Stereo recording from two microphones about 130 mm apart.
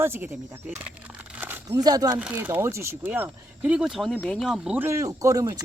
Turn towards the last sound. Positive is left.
turn(degrees=-25)  # may be behind; listen again after turning